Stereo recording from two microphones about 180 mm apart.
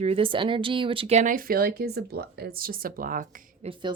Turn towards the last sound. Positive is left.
turn(degrees=-25)  # may be behind; listen again after turning